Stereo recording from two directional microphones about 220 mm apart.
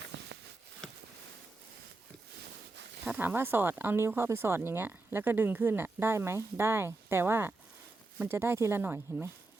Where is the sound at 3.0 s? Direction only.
5° right (ahead or behind).